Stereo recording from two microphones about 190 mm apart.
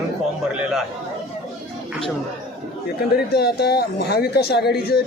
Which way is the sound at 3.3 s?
60° left (ahead or behind).